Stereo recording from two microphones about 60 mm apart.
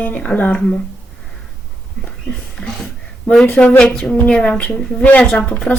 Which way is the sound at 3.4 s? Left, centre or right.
Left.